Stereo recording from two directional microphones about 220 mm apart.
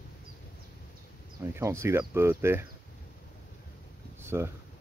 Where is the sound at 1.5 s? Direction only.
10° right (ahead or behind).